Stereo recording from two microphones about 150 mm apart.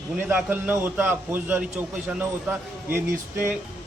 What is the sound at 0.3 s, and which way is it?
A man's voice, 10° right (ahead or behind).